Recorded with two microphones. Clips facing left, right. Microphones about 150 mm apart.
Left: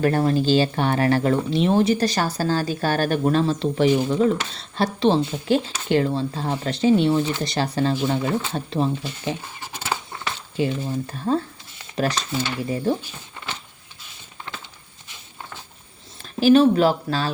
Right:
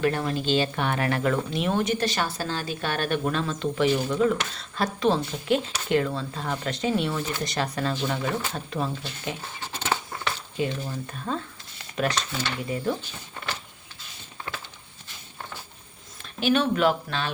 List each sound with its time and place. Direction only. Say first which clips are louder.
0.0 s speech: left 6 dB; 40° left (ahead or behind)
9.6 s a sound: even; 10° left (ahead or behind)
10.6 s speech: left 5 dB; 30° left (ahead or behind)
16.4 s speech: left 7 dB; 35° left (ahead or behind)